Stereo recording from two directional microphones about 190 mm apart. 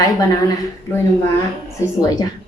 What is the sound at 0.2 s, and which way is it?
Speech, 20° left (ahead or behind).